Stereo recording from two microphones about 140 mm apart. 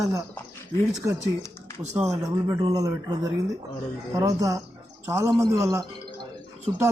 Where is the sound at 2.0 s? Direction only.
20° right (ahead or behind).